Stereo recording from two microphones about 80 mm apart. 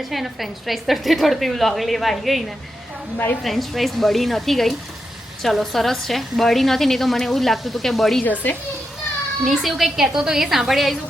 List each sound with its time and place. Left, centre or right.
0.0 s a woman's voice: centre
3.4 s a woman's voice: centre
8.2 s speech: left
9.4 s a woman's voice: centre